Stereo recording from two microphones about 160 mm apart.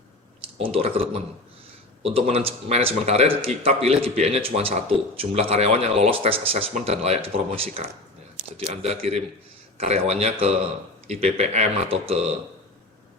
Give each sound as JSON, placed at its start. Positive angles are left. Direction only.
{"t": 0.6, "sound": "a man's voice", "side_deg": -35}